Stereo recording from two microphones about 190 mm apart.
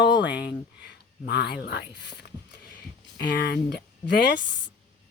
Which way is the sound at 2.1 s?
60° left (ahead or behind).